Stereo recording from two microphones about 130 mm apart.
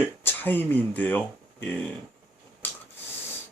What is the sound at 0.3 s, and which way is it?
Speech, 15° left (ahead or behind).